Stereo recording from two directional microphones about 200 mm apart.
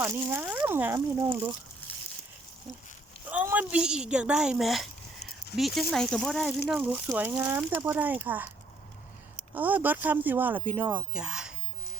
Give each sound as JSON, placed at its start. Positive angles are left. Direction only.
{"t": 0.0, "sound": "speech", "side_deg": -15}
{"t": 3.2, "sound": "speech", "side_deg": -10}
{"t": 9.6, "sound": "speech", "side_deg": -10}